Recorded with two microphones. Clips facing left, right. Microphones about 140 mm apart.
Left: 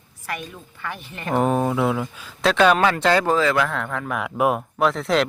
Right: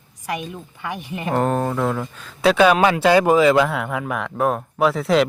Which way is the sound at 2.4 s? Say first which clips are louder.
Right 2 dB; 5° right (ahead or behind).